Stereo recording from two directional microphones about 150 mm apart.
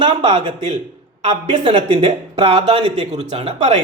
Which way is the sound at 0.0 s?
35° right (ahead or behind).